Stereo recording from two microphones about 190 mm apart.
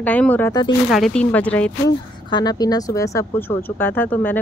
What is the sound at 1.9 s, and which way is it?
Speech, 20° left (ahead or behind).